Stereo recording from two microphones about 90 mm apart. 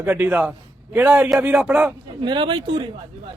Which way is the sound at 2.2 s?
60° right (ahead or behind).